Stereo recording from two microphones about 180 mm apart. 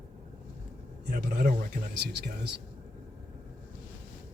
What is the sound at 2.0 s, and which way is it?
Speech, 65° right (ahead or behind).